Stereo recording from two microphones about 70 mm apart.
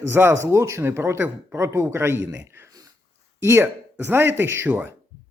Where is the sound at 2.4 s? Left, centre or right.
Right.